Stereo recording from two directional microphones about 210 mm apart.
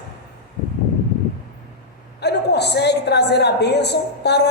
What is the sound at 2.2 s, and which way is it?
A woman's voice, 55° left (ahead or behind).